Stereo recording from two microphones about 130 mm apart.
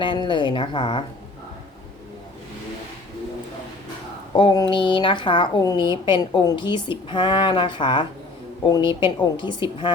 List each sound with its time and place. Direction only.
0.0 s a woman's voice: 35° left (ahead or behind)
4.4 s a woman's voice: 40° left (ahead or behind)